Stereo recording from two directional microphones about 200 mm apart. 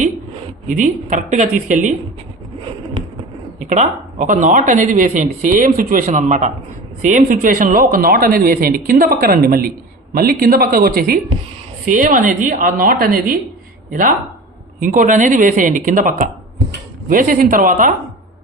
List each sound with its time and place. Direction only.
0.7 s speech: 40° right (ahead or behind)
3.7 s a man's voice: 35° right (ahead or behind)